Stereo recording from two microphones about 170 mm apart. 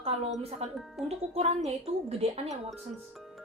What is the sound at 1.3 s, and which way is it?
Speech, 35° right (ahead or behind).